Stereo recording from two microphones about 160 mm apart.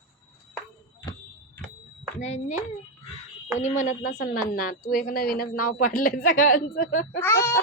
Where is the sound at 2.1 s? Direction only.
45° left (ahead or behind).